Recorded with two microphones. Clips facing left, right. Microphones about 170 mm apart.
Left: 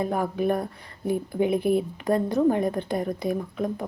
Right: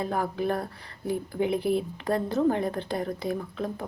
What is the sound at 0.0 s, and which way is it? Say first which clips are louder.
Speech: left 3 dB; 20° left (ahead or behind).